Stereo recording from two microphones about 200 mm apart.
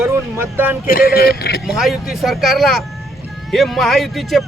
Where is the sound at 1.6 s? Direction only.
Centre (ahead or behind).